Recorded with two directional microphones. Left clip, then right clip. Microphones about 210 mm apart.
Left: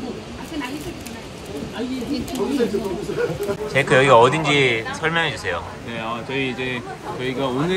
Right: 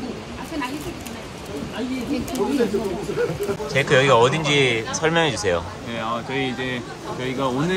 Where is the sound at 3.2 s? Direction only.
5° right (ahead or behind).